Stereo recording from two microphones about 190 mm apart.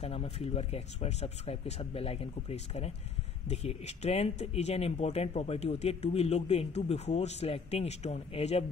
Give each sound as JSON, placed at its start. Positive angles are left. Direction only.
{"t": 0.0, "sound": "speech", "side_deg": 30}